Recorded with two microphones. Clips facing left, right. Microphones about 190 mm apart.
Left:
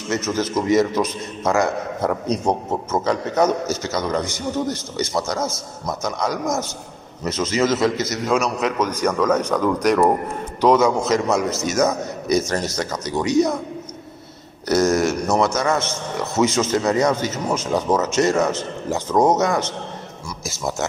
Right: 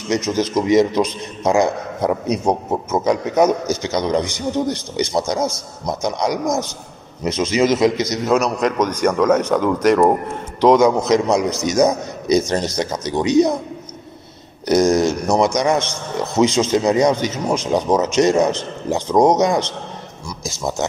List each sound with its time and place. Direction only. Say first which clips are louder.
0.1 s speech: right 3 dB; 15° right (ahead or behind)
14.7 s speech: right 3 dB; 15° right (ahead or behind)